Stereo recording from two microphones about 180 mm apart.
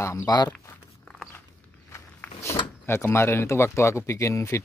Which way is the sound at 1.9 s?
15° left (ahead or behind).